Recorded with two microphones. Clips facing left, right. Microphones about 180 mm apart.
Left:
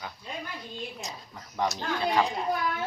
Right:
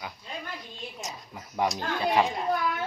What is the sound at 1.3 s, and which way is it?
Speech, 15° right (ahead or behind).